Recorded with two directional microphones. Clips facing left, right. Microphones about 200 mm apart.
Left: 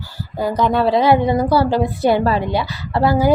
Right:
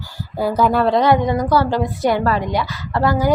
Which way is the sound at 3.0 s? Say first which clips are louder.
Left 2 dB; 10° left (ahead or behind).